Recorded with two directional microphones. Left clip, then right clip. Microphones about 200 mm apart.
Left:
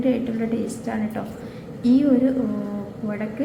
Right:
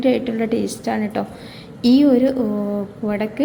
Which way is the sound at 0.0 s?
30° right (ahead or behind).